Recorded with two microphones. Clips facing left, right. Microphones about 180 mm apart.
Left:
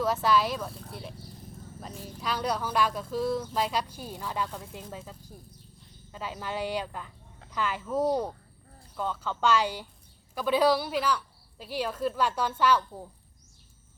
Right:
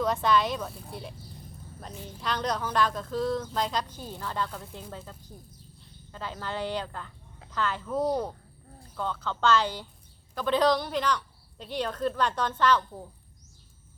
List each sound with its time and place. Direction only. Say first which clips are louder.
0.0 s speech: even; 5° left (ahead or behind)